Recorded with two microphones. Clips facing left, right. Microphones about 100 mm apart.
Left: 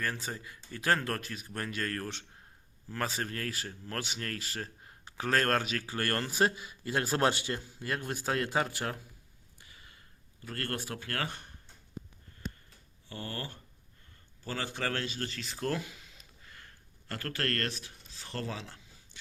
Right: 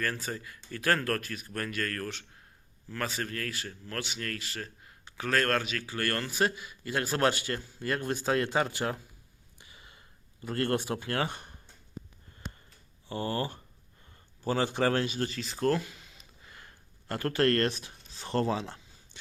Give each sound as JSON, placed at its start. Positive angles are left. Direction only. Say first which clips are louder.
{"t": 0.0, "sound": "a man's voice", "louder": "right 2 dB", "side_deg": 15}
{"t": 7.8, "sound": "speech", "louder": "right 4 dB", "side_deg": 5}
{"t": 9.6, "sound": "a sound", "louder": "right 2 dB", "side_deg": -20}
{"t": 10.4, "sound": "speech", "louder": "right 8 dB", "side_deg": -20}
{"t": 13.1, "sound": "speech", "louder": "right 8 dB", "side_deg": -20}
{"t": 15.6, "sound": "speech", "louder": "right 6 dB", "side_deg": 5}
{"t": 16.5, "sound": "a sound", "louder": "right 2 dB", "side_deg": -15}